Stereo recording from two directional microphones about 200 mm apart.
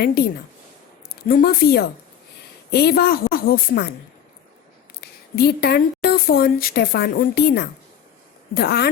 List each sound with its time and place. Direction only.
0.0 s a woman's voice: 50° left (ahead or behind)
1.3 s a woman's voice: 50° left (ahead or behind)
4.9 s a woman's voice: 50° left (ahead or behind)